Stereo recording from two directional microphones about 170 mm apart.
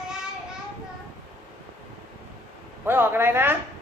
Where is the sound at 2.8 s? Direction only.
15° right (ahead or behind).